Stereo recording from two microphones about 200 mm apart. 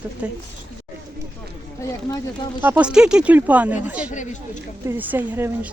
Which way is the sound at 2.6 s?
10° right (ahead or behind).